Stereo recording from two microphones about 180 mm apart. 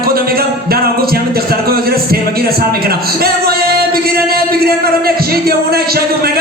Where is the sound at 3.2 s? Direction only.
55° right (ahead or behind).